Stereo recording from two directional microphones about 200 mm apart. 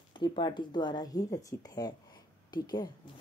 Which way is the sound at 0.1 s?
25° left (ahead or behind).